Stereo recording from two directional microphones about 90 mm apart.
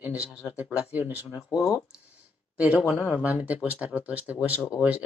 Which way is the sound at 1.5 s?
40° left (ahead or behind).